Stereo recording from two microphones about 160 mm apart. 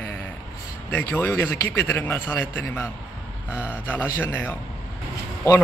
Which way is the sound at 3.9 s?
15° left (ahead or behind).